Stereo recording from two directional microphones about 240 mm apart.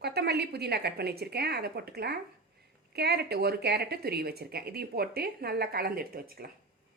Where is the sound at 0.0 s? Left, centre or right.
Right.